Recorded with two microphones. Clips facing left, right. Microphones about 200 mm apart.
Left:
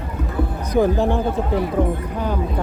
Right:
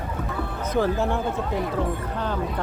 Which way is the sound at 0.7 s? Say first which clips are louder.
Left 5 dB; 15° left (ahead or behind).